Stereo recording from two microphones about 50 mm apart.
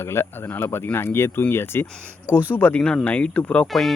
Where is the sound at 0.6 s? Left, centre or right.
Left.